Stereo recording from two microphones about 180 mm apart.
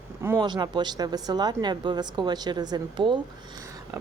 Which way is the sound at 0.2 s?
15° right (ahead or behind).